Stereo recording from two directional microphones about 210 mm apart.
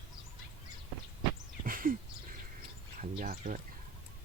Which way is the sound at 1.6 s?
40° right (ahead or behind).